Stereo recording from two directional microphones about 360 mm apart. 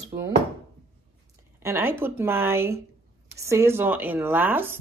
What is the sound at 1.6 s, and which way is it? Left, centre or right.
Speech, centre.